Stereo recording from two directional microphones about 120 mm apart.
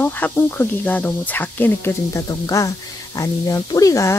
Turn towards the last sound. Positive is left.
turn(degrees=30)  # may be behind; listen again after turning